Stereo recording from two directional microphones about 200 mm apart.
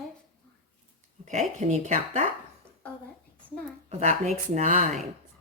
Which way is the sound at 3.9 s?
35° right (ahead or behind).